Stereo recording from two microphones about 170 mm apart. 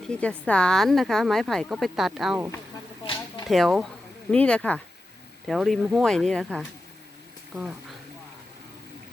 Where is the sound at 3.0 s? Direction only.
25° left (ahead or behind).